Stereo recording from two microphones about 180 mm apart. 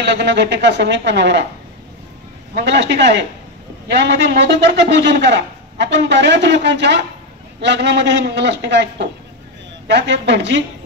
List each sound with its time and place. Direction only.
0.0 s a man's voice: 75° right (ahead or behind)
2.5 s a man's voice: 75° right (ahead or behind)